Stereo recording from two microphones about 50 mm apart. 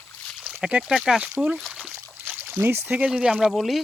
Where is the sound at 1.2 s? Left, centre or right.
Right.